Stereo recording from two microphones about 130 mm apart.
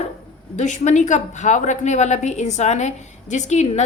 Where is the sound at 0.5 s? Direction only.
65° left (ahead or behind).